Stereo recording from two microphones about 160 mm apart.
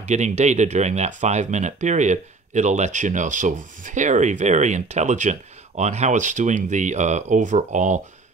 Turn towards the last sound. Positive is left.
turn(degrees=-50)  # may be behind; listen again after turning